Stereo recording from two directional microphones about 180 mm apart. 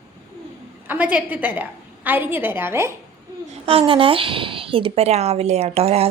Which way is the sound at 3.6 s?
30° right (ahead or behind).